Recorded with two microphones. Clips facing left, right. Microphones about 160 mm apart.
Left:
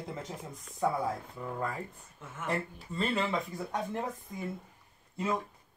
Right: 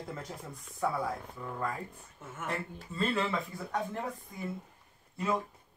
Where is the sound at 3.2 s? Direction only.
20° left (ahead or behind).